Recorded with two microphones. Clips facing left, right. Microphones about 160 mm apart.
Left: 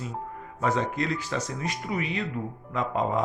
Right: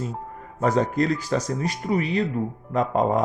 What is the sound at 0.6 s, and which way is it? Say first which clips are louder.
Speech: right 6 dB; 40° right (ahead or behind).